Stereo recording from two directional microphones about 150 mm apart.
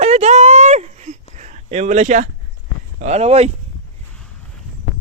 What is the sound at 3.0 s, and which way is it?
Speech, 45° right (ahead or behind).